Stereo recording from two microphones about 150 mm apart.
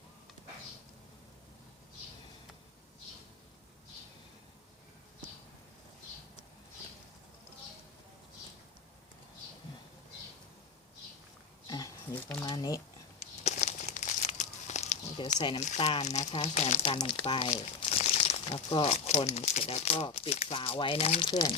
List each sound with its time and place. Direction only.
11.6 s a sound: 25° left (ahead or behind)
12.5 s speech: 25° left (ahead or behind)
13.1 s crumpling: 50° left (ahead or behind)
15.4 s speech: 30° left (ahead or behind)
15.6 s speech: 50° left (ahead or behind)
16.9 s speech: 35° left (ahead or behind)
17.5 s crumpling: 45° left (ahead or behind)
19.3 s speech: 50° left (ahead or behind)
21.2 s speech: 30° left (ahead or behind)